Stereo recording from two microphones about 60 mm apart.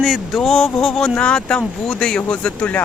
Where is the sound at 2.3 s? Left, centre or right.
Left.